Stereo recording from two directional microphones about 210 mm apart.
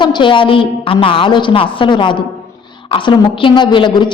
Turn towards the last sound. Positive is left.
turn(degrees=20)  # may be behind; listen again after turning